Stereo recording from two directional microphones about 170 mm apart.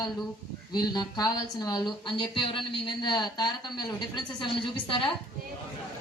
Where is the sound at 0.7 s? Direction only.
25° left (ahead or behind).